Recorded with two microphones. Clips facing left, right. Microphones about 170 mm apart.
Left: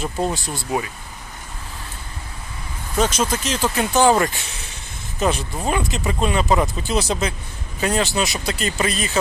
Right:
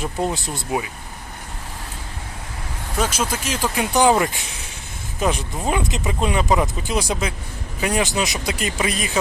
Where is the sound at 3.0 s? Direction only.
10° right (ahead or behind).